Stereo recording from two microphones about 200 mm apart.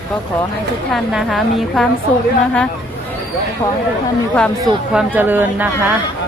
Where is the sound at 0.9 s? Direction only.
Centre (ahead or behind).